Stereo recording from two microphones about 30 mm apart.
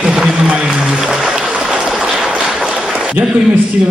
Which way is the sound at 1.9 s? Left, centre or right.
Centre.